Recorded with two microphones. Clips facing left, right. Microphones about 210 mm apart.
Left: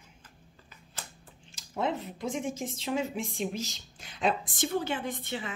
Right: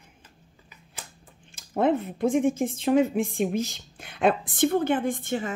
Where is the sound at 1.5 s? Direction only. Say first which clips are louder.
Right 8 dB; 55° right (ahead or behind).